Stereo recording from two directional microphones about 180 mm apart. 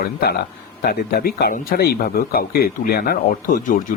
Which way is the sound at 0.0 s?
60° left (ahead or behind).